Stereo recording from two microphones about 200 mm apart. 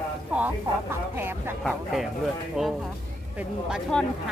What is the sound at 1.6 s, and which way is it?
Speech, centre (ahead or behind).